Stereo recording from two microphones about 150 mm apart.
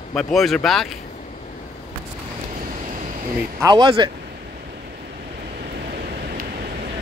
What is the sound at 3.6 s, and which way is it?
Speech, 30° right (ahead or behind).